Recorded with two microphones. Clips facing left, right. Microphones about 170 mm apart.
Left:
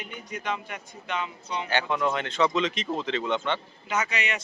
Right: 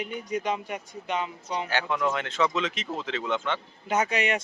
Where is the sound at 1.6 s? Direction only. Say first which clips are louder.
Left 2 dB; centre (ahead or behind).